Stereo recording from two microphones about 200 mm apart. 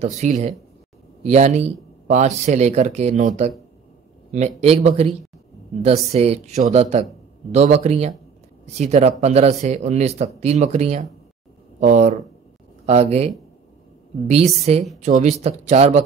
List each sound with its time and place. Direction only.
0.2 s speech: 35° right (ahead or behind)